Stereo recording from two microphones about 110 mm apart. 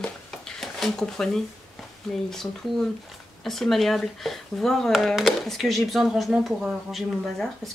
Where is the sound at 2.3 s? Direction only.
5° left (ahead or behind).